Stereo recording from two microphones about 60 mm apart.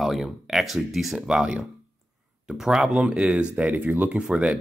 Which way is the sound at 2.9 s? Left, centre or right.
Right.